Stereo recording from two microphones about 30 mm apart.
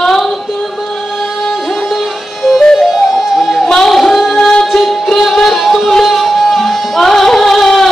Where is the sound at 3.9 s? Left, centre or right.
Centre.